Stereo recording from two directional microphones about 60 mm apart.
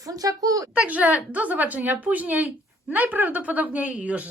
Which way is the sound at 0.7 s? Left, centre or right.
Right.